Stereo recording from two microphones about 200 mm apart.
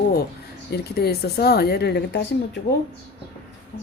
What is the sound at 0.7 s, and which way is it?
Speech, 55° left (ahead or behind).